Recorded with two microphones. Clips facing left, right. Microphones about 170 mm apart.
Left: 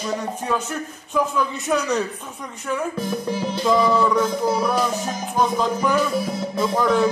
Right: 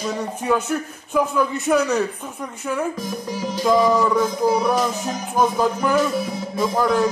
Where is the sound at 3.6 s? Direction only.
15° right (ahead or behind).